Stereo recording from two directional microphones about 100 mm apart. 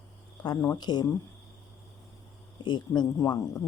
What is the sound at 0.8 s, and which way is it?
Speech, 45° left (ahead or behind).